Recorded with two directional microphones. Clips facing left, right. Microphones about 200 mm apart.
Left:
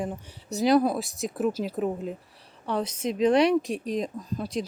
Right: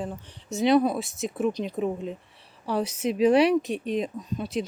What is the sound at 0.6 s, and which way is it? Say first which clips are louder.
Speech: even; centre (ahead or behind).